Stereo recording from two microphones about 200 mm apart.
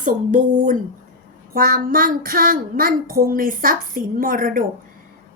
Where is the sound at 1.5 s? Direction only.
45° right (ahead or behind).